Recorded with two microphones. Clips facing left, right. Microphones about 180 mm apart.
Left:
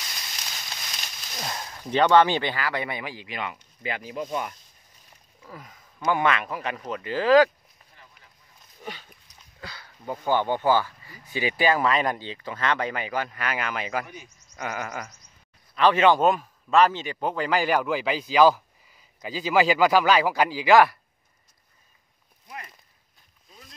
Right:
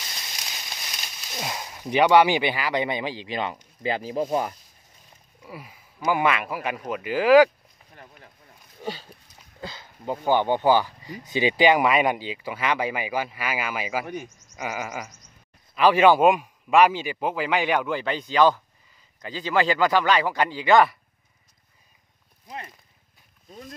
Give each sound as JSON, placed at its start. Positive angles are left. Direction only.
{"t": 1.3, "sound": "speech", "side_deg": -10}
{"t": 5.4, "sound": "speech", "side_deg": -10}
{"t": 7.9, "sound": "a sound", "side_deg": -55}
{"t": 8.8, "sound": "speech", "side_deg": -30}
{"t": 14.0, "sound": "speech", "side_deg": -60}
{"t": 14.6, "sound": "a man's voice", "side_deg": -5}